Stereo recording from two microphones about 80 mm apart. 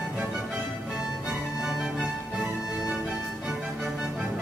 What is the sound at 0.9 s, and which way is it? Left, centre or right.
Music, centre.